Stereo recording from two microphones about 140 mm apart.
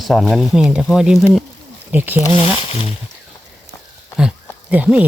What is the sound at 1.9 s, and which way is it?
Speech, 15° right (ahead or behind).